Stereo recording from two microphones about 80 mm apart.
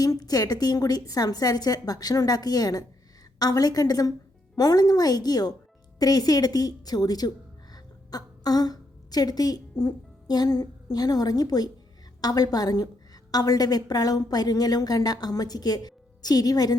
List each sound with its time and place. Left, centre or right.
0.0 s speech: left